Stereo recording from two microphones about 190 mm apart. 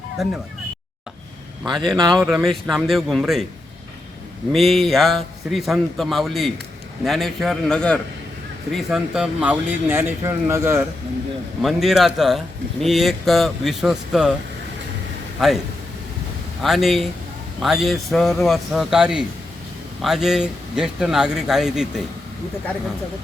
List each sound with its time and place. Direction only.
0.2 s speech: centre (ahead or behind)
1.8 s speech: 20° right (ahead or behind)
2.1 s speech: centre (ahead or behind)
4.5 s speech: centre (ahead or behind)
11.6 s speech: centre (ahead or behind)
16.6 s speech: centre (ahead or behind)